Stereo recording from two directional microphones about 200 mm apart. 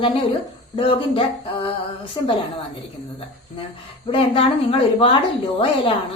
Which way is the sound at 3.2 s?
25° left (ahead or behind).